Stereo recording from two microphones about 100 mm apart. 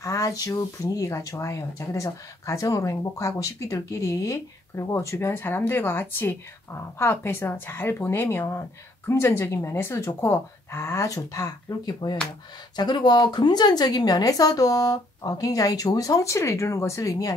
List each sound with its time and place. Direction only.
0.0 s speech: 35° left (ahead or behind)